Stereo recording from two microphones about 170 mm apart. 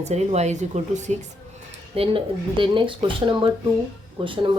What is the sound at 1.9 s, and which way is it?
Speech, 30° right (ahead or behind).